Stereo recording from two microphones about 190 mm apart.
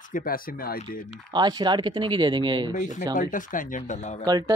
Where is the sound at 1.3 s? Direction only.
25° right (ahead or behind).